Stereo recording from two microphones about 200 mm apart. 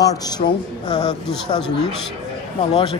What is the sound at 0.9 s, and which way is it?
Speech, 20° left (ahead or behind).